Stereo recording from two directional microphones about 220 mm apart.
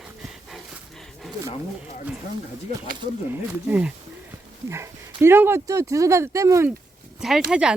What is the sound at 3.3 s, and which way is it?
Speech, 5° right (ahead or behind).